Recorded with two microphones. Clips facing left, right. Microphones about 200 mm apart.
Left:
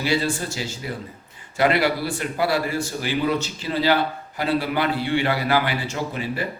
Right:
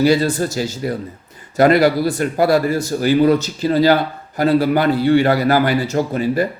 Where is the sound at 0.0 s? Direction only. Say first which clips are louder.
Right 9 dB; 40° right (ahead or behind).